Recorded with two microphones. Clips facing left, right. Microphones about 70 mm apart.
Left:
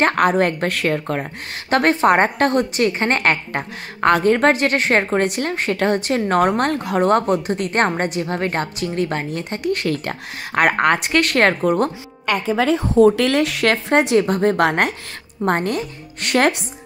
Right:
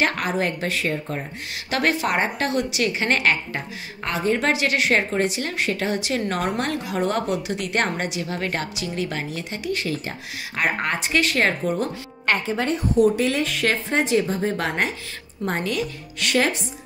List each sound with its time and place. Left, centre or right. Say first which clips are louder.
0.0 s a woman's voice: left 7 dB; left
1.7 s a woman's voice: left 7 dB; left
13.1 s speech: left 5 dB; left
15.4 s a woman's voice: left 5 dB; left